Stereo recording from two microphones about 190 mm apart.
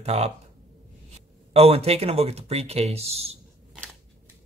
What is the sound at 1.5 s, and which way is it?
Speech, 30° right (ahead or behind).